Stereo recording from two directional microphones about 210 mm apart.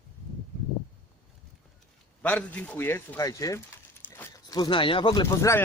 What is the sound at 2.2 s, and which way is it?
A man's voice, 5° left (ahead or behind).